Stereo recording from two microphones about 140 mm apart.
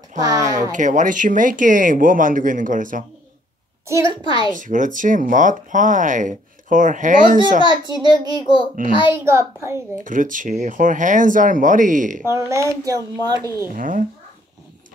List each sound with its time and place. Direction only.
0.4 s speech: 60° right (ahead or behind)
4.0 s a woman's voice: 35° left (ahead or behind)
4.6 s speech: 70° right (ahead or behind)
7.6 s a child's voice: 30° right (ahead or behind)
8.8 s speech: 75° right (ahead or behind)
9.1 s speech: 20° right (ahead or behind)
10.0 s speech: 70° right (ahead or behind)
12.3 s speech: 20° right (ahead or behind)
13.7 s speech: 70° right (ahead or behind)